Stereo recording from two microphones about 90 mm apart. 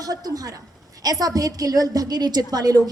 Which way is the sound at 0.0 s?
45° right (ahead or behind).